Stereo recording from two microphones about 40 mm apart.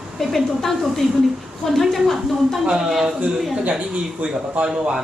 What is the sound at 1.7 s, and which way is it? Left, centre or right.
Speech, centre.